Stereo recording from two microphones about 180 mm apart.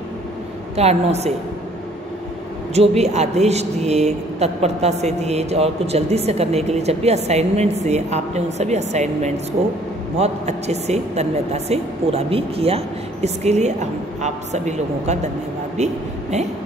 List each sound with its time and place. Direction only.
0.7 s a woman's voice: 35° right (ahead or behind)
2.7 s a woman's voice: 35° right (ahead or behind)